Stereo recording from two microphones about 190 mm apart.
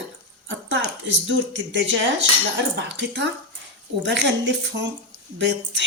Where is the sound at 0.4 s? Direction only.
80° right.